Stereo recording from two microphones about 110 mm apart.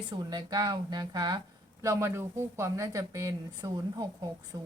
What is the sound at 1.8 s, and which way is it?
A woman's voice, 25° right (ahead or behind).